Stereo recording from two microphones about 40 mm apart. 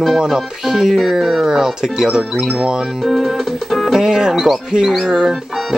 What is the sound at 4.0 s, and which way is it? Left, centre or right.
A man's voice, centre.